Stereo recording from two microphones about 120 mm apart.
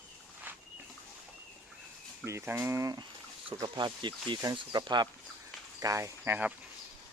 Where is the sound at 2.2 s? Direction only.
20° right (ahead or behind).